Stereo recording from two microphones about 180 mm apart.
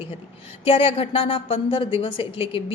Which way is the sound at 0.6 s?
30° left (ahead or behind).